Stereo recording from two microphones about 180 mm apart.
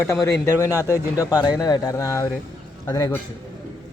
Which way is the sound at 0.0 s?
15° left (ahead or behind).